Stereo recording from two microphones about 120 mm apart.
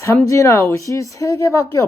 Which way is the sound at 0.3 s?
25° left (ahead or behind).